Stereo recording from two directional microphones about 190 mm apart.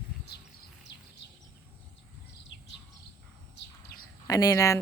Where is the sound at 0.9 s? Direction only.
65° left (ahead or behind).